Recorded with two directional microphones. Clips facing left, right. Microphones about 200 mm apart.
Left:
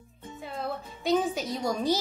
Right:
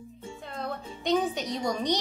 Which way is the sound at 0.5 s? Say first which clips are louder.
Left 1 dB; 5° left (ahead or behind).